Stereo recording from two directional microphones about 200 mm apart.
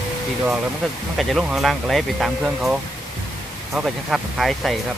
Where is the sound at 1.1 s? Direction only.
Centre (ahead or behind).